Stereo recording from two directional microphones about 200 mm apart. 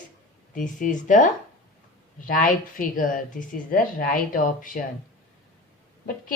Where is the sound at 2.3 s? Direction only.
40° left (ahead or behind).